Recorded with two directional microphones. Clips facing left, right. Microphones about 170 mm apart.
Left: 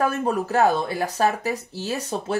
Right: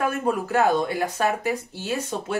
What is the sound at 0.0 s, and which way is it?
Speech, 30° left (ahead or behind).